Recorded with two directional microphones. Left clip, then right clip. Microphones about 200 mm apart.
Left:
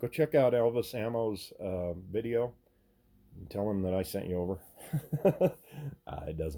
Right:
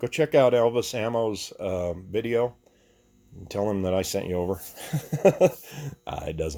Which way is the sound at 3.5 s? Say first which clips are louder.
Right 7 dB; 25° right (ahead or behind).